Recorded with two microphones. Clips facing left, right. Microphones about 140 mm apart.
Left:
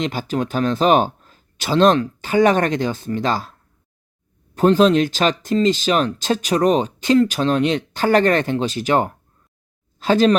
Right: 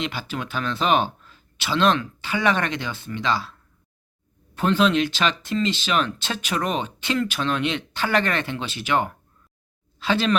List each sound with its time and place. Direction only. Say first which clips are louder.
0.0 s speech: left 7 dB; 40° left (ahead or behind)
4.5 s speech: left 6 dB; 40° left (ahead or behind)